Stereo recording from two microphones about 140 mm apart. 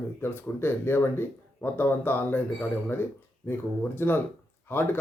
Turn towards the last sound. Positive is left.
turn(degrees=15)  # may be behind; listen again after turning